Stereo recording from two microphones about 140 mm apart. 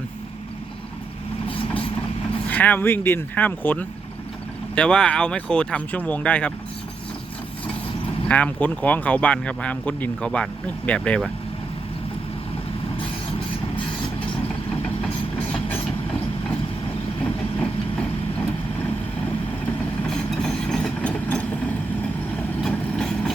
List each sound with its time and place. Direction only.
1.5 s vehicle: 40° left (ahead or behind)
2.5 s speech: 10° left (ahead or behind)
8.3 s speech: 10° left (ahead or behind)
20.1 s vehicle: 5° left (ahead or behind)